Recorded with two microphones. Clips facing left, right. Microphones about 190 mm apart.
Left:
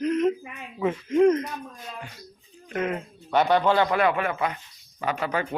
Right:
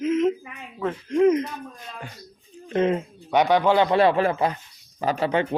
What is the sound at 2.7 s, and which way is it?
Speech, 25° right (ahead or behind).